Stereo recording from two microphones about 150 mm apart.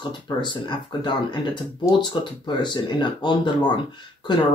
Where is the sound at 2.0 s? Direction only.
30° left (ahead or behind).